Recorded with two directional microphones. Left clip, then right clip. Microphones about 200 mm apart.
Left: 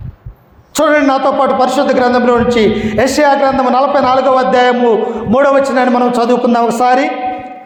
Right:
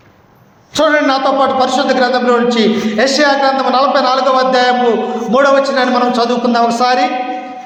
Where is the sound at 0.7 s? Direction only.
45° left (ahead or behind).